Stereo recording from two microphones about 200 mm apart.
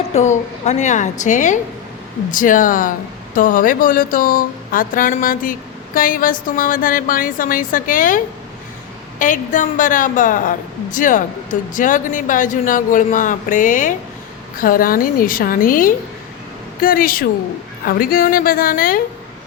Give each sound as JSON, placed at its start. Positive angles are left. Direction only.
{"t": 0.1, "sound": "a man's voice", "side_deg": 35}